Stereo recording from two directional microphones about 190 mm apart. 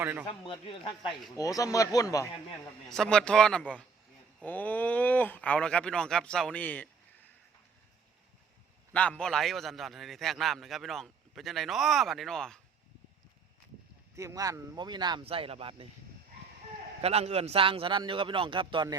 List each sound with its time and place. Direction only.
0.0 s speech: 10° right (ahead or behind)
0.3 s speech: 25° left (ahead or behind)
2.9 s a man's voice: 5° left (ahead or behind)
8.9 s a man's voice: 5° left (ahead or behind)
14.2 s a man's voice: 15° right (ahead or behind)
17.0 s a man's voice: 35° right (ahead or behind)